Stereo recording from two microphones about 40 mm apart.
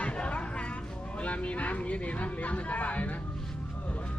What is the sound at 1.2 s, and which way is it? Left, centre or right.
Speech, left.